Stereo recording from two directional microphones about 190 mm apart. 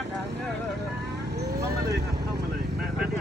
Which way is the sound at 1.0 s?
60° right (ahead or behind).